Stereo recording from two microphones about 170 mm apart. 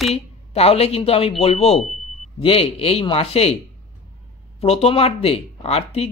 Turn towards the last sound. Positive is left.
turn(degrees=40)  # may be behind; listen again after turning